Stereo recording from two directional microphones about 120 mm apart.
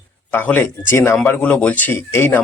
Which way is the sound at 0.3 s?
15° left (ahead or behind).